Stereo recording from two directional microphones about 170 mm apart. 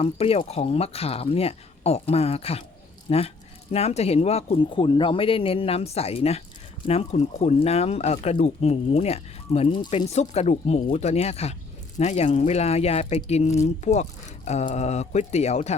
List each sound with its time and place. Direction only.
0.0 s speech: 35° left (ahead or behind)
10.1 s speech: 40° left (ahead or behind)